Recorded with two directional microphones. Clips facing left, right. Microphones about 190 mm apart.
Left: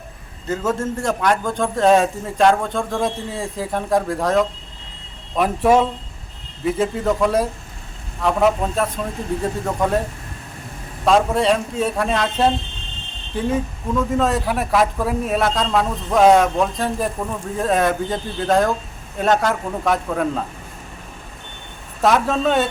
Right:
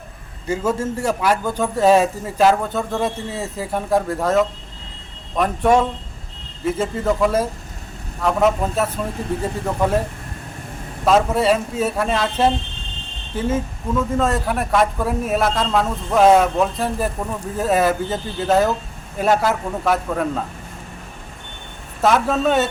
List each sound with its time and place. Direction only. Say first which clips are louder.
0.4 s a man's voice: right 1 dB; 10° right (ahead or behind)
11.0 s a man's voice: even; 5° right (ahead or behind)
22.0 s a man's voice: even; centre (ahead or behind)